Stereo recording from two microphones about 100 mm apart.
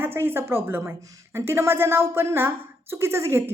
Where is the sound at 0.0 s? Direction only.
20° right (ahead or behind).